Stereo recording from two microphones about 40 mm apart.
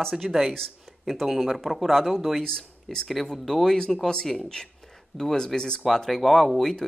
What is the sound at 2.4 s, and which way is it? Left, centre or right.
Speech, centre.